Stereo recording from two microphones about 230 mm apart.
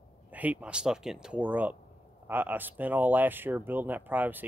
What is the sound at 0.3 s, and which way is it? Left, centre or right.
Speech, centre.